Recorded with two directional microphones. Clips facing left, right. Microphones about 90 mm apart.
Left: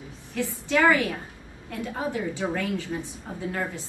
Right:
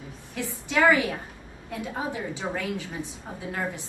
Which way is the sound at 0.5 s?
15° right (ahead or behind).